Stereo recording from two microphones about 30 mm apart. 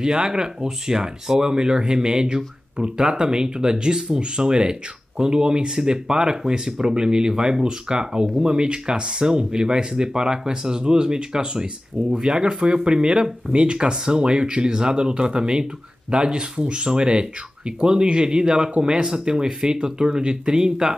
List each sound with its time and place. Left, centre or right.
0.0 s speech: right